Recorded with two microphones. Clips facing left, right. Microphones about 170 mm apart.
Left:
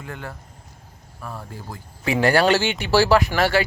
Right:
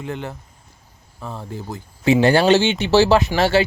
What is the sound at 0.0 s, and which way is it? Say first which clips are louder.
Speech: right 6 dB; 20° right (ahead or behind).